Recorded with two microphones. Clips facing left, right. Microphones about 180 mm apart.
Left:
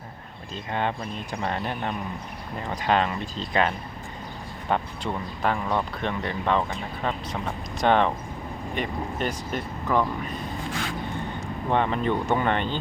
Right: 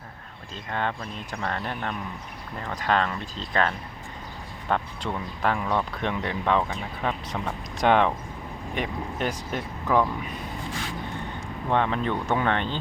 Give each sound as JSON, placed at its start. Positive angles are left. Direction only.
{"t": 0.7, "sound": "speech", "side_deg": 20}
{"t": 11.7, "sound": "speech", "side_deg": 10}